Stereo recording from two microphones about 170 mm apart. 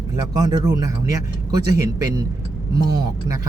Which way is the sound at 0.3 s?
25° right (ahead or behind).